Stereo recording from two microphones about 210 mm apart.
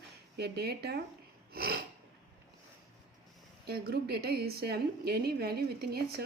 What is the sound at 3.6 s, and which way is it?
A woman's voice, 50° right (ahead or behind).